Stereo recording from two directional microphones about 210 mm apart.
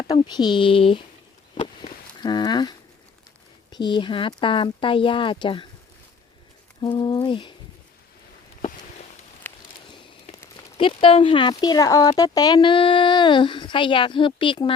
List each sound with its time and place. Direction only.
0.1 s speech: 20° left (ahead or behind)
1.5 s a sound: 20° left (ahead or behind)
3.7 s speech: 20° left (ahead or behind)
6.8 s speech: 20° left (ahead or behind)
10.4 s speech: 20° left (ahead or behind)